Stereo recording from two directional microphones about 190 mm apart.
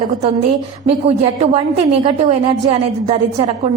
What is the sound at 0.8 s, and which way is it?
A woman's voice, 35° right (ahead or behind).